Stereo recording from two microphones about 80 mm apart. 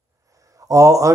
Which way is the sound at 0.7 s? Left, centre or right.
Right.